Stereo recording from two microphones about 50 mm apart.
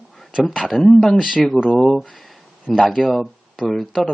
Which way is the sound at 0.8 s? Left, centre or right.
Centre.